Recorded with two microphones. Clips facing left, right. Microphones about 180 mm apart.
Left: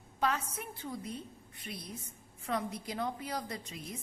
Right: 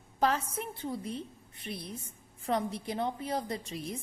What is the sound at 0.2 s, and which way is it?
A woman's voice, 35° right (ahead or behind).